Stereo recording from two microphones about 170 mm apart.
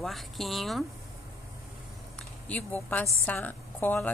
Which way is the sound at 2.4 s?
10° left (ahead or behind).